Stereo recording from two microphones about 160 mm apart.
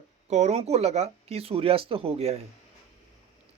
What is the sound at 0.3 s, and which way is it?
Speech, 45° right (ahead or behind).